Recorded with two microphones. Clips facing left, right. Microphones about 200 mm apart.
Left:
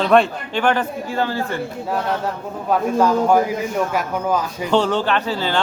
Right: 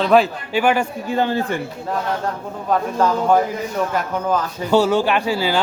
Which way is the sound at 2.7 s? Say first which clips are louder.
Left 2 dB; 10° left (ahead or behind).